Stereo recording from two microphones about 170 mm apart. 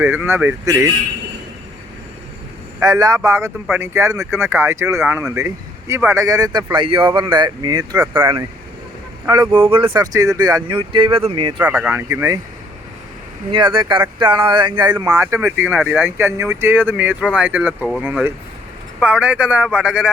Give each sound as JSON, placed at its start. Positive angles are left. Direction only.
{"t": 0.0, "sound": "speech", "side_deg": -10}
{"t": 2.8, "sound": "speech", "side_deg": -20}
{"t": 7.9, "sound": "speech", "side_deg": -10}
{"t": 9.9, "sound": "speech", "side_deg": -20}
{"t": 11.6, "sound": "speech", "side_deg": -5}
{"t": 12.0, "sound": "speech", "side_deg": -20}
{"t": 13.5, "sound": "speech", "side_deg": -30}
{"t": 15.6, "sound": "speech", "side_deg": 0}
{"t": 16.0, "sound": "speech", "side_deg": -15}